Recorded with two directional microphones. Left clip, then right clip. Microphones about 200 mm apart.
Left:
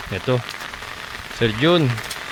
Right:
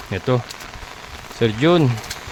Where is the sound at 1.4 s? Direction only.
25° right (ahead or behind).